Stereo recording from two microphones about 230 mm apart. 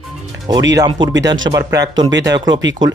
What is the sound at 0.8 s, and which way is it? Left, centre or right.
Speech, centre.